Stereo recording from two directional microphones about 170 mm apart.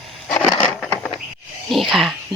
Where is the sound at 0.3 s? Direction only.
10° left (ahead or behind).